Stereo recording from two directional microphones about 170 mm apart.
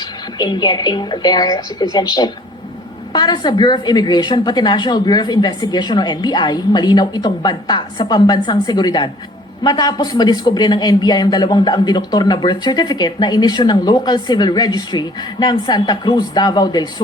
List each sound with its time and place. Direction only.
0.3 s speech: 25° left (ahead or behind)